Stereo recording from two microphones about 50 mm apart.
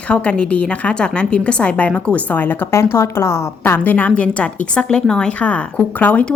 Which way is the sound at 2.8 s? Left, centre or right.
Left.